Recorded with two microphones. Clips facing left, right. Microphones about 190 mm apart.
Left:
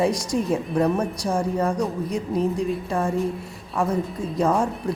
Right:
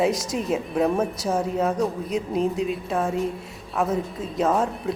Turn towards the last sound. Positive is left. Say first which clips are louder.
# left 1 dB
turn(degrees=0)  # may be behind; listen again after turning